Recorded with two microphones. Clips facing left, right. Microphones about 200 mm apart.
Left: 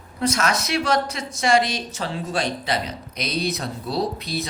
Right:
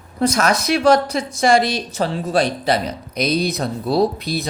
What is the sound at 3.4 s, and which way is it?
Speech, 60° right (ahead or behind).